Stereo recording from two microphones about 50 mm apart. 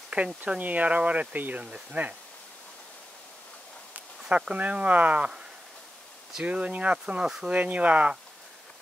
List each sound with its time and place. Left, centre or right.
0.1 s speech: right
1.6 s speech: right
4.6 s speech: right
6.4 s speech: right